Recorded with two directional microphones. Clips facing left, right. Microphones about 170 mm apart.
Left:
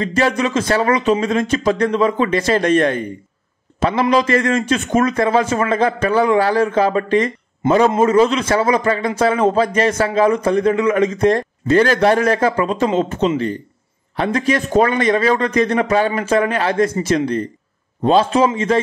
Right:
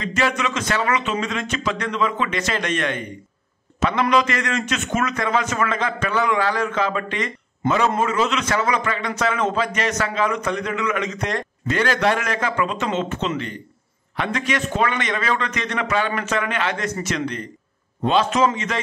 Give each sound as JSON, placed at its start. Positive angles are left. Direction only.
{"t": 0.0, "sound": "a man's voice", "side_deg": 35}